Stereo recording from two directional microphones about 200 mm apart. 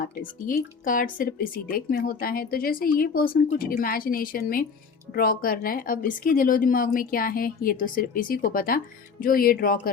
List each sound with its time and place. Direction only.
0.0 s speech: 45° left (ahead or behind)